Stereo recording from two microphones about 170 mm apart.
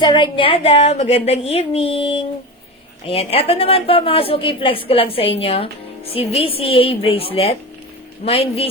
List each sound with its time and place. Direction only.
0.0 s a woman's voice: 25° left (ahead or behind)